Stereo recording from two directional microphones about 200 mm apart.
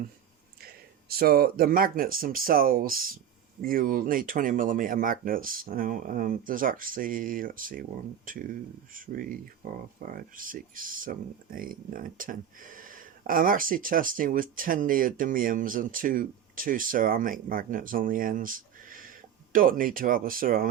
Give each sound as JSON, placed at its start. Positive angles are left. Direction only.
{"t": 1.1, "sound": "speech", "side_deg": -50}